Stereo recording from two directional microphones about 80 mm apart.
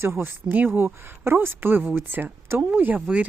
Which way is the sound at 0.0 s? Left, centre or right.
Right.